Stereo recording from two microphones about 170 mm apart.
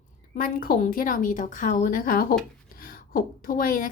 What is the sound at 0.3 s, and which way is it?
A woman's voice, 60° left (ahead or behind).